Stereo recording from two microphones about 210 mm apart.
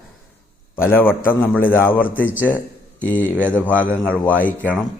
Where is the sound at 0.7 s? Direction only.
10° left (ahead or behind).